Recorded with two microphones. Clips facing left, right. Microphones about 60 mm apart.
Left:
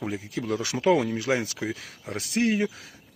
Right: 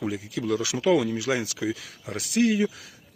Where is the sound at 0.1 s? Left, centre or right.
Left.